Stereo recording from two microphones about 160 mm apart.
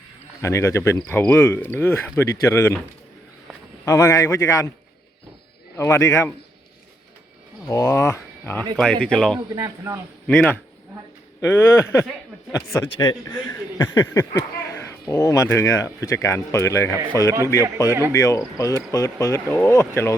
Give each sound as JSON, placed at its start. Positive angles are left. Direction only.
{"t": 0.4, "sound": "speech", "side_deg": 15}
{"t": 3.8, "sound": "speech", "side_deg": 20}
{"t": 5.7, "sound": "speech", "side_deg": 15}
{"t": 7.7, "sound": "speech", "side_deg": 20}
{"t": 9.5, "sound": "speech", "side_deg": -20}
{"t": 10.2, "sound": "speech", "side_deg": 10}